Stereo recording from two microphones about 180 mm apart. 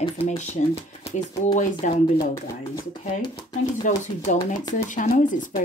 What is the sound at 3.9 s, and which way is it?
A woman's voice, 40° left (ahead or behind).